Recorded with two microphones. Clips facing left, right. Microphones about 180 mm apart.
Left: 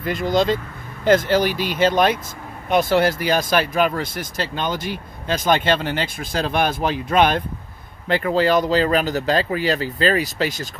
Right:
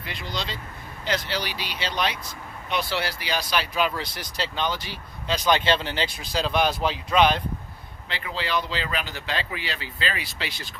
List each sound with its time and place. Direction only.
0.0 s speech: 45° left (ahead or behind)